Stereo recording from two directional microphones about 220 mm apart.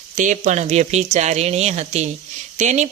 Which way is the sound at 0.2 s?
35° right (ahead or behind).